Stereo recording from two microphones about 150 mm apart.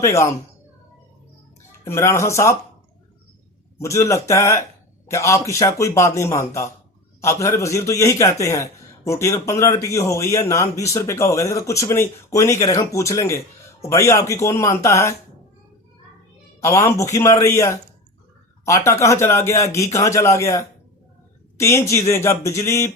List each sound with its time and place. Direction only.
0.0 s speech: 20° left (ahead or behind)
1.9 s speech: 20° left (ahead or behind)
3.8 s speech: 20° left (ahead or behind)
16.6 s speech: 20° left (ahead or behind)